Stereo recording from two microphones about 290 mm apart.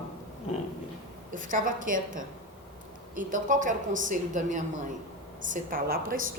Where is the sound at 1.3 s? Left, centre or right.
Right.